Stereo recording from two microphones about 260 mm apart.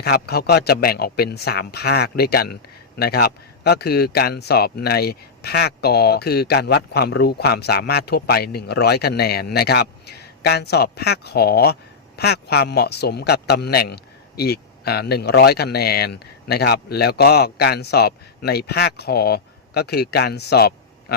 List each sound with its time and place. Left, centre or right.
0.0 s speech: left